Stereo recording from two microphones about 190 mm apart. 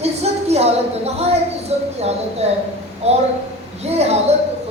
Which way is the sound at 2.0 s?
35° right (ahead or behind).